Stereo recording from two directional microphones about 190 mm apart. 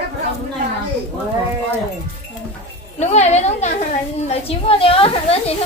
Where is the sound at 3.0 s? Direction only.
35° left (ahead or behind).